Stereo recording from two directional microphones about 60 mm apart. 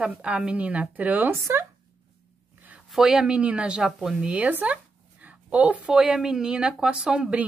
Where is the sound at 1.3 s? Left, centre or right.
Right.